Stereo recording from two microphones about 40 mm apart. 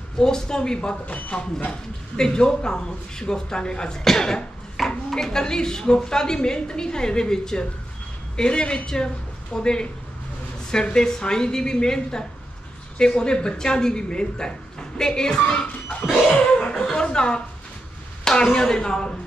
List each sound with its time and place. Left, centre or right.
0.2 s a woman's voice: centre
0.7 s speech: left
1.7 s a woman's voice: centre
16.3 s laughter: left
16.9 s speech: left